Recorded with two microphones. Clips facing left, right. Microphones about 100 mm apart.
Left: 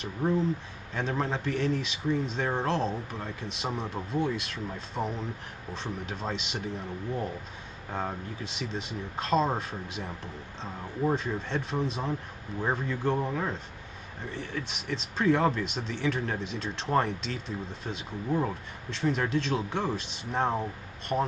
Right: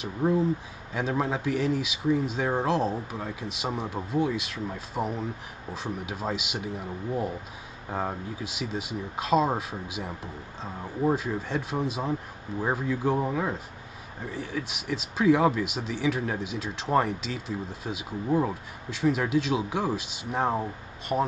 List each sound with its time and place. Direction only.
0.0 s speech: 10° right (ahead or behind)